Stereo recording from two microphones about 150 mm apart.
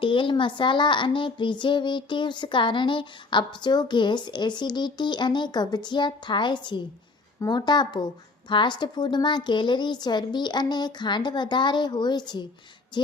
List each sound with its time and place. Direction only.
0.0 s child singing: 35° left (ahead or behind)
7.4 s speech: 30° left (ahead or behind)